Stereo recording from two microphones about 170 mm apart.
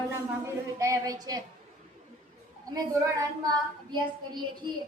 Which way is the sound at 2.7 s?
20° right (ahead or behind).